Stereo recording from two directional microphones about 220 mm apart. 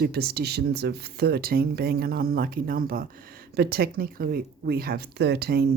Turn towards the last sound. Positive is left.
turn(degrees=-45)  # may be behind; listen again after turning